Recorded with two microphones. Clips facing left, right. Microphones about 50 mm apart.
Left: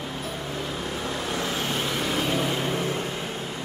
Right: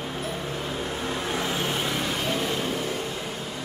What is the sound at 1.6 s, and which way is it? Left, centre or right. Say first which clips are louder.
Vehicle: even; centre.